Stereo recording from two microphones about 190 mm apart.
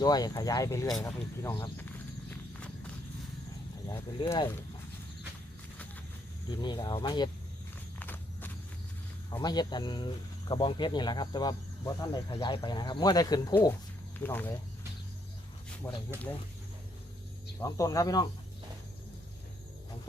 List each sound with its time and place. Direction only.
0.0 s speech: 20° left (ahead or behind)
2.5 s horse: 5° left (ahead or behind)
3.8 s speech: 15° left (ahead or behind)
6.5 s speech: 20° left (ahead or behind)
7.9 s walk: 10° left (ahead or behind)
9.4 s speech: 20° left (ahead or behind)
14.2 s speech: 10° left (ahead or behind)
15.8 s speech: 10° left (ahead or behind)
17.6 s speech: 15° left (ahead or behind)